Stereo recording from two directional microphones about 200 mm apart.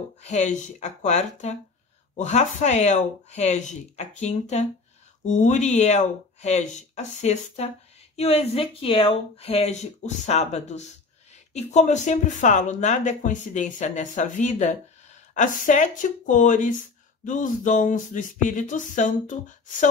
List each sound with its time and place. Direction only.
0.2 s speech: 35° left (ahead or behind)